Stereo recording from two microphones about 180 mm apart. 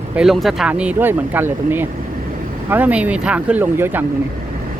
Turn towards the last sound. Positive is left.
turn(degrees=-10)  # may be behind; listen again after turning